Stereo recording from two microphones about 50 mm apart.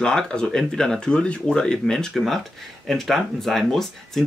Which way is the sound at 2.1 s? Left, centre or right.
Centre.